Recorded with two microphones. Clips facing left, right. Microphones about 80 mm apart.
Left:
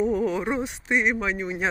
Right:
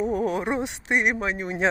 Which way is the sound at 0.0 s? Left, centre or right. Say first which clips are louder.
Left 1 dB; right.